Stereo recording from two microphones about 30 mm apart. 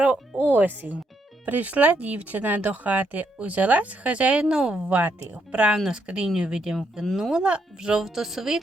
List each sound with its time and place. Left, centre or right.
0.0 s music: right
0.4 s speech: right
1.5 s speech: right
3.3 s speech: right
4.4 s speech: right
4.9 s a woman's voice: right
5.3 s speech: right
5.7 s speech: right
7.3 s speech: right
8.0 s a woman's voice: centre